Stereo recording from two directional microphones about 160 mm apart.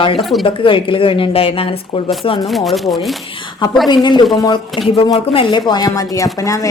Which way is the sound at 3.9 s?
25° left (ahead or behind).